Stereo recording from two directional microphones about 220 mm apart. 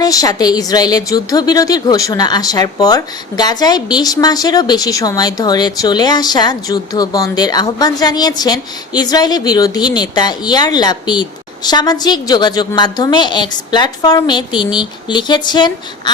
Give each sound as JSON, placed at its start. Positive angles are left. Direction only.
{"t": 0.0, "sound": "a woman's voice", "side_deg": 15}